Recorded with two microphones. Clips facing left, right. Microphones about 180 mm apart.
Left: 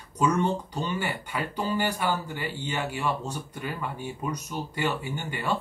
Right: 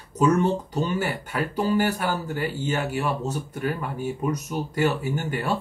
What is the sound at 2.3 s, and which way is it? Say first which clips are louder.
Speech: right 6 dB; 45° right (ahead or behind).